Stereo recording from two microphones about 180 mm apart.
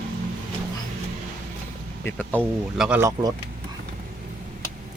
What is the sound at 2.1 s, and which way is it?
Speech, 10° left (ahead or behind).